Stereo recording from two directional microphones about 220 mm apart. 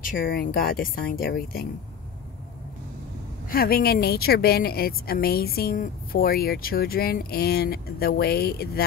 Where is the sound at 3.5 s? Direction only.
40° left (ahead or behind).